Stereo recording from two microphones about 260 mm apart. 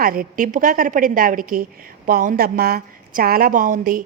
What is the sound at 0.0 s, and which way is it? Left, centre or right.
A woman's voice, right.